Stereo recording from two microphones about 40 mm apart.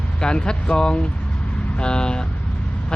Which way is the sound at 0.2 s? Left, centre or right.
Left.